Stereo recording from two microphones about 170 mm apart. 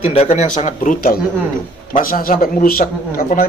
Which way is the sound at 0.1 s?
40° left (ahead or behind).